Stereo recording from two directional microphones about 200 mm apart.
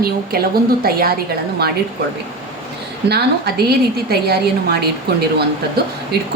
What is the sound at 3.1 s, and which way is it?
A woman's voice, 55° right (ahead or behind).